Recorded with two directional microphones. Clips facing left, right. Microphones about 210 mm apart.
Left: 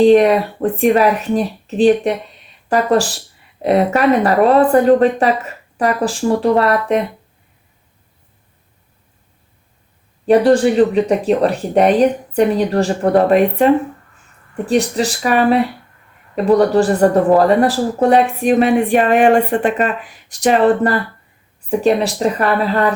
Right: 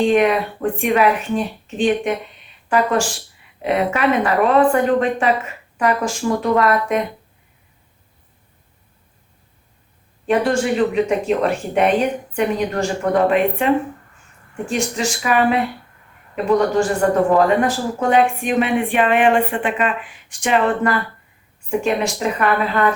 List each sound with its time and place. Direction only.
0.0 s speech: 35° left (ahead or behind)
10.2 s speech: 35° left (ahead or behind)